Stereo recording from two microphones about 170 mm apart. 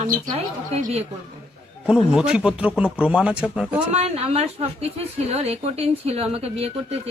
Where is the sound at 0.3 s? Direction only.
40° right (ahead or behind).